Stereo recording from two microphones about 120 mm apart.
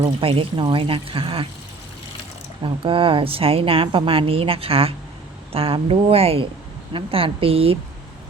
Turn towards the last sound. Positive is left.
turn(degrees=-50)  # may be behind; listen again after turning